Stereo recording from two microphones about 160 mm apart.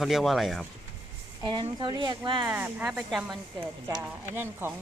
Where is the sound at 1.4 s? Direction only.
30° right (ahead or behind).